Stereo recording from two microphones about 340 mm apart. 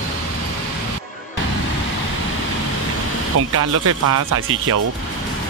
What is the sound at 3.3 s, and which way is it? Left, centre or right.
Speech, right.